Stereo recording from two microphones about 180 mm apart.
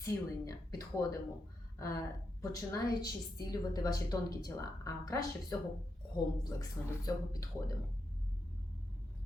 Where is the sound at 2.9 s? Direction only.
20° left (ahead or behind).